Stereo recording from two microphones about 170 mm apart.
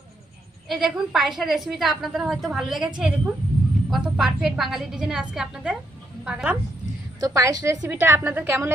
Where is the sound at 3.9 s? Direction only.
Centre (ahead or behind).